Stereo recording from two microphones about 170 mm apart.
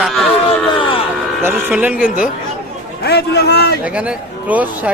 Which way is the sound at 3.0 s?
70° left (ahead or behind).